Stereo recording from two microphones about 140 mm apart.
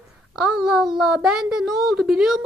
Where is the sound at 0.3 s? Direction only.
5° right (ahead or behind).